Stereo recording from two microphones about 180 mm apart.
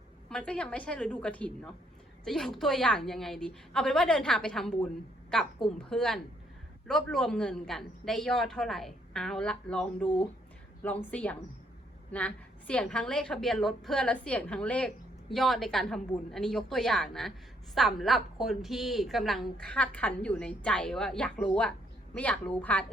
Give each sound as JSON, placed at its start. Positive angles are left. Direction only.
{"t": 0.3, "sound": "a woman's voice", "side_deg": 5}